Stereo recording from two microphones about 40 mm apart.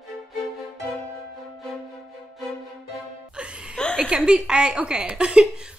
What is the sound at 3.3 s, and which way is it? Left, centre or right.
Music, right.